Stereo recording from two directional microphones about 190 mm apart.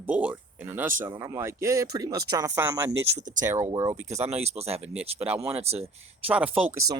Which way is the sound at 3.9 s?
35° right (ahead or behind).